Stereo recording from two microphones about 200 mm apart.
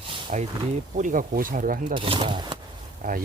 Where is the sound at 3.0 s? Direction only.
40° right (ahead or behind).